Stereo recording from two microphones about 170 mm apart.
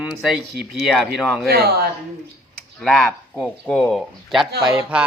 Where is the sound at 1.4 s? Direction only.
65° right (ahead or behind).